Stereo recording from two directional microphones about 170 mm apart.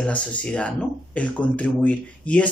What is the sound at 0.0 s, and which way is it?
Speech, 5° left (ahead or behind).